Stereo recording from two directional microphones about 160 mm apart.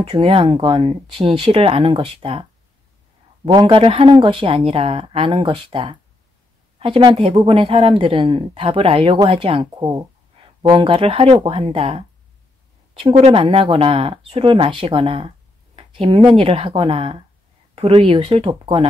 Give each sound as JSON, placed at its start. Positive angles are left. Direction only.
{"t": 0.0, "sound": "speech", "side_deg": -35}
{"t": 3.4, "sound": "speech", "side_deg": -30}
{"t": 13.3, "sound": "speech", "side_deg": -35}